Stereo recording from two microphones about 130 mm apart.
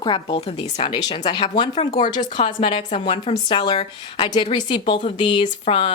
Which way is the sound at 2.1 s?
75° left (ahead or behind).